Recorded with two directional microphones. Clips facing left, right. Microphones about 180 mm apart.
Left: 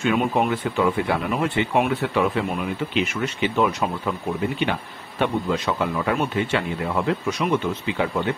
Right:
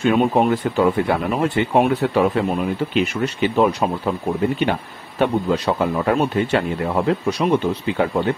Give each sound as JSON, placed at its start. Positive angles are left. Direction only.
{"t": 0.0, "sound": "speech", "side_deg": -35}
{"t": 5.2, "sound": "speech", "side_deg": -40}